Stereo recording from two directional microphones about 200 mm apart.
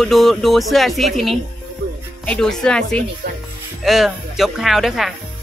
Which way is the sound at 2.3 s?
5° left (ahead or behind).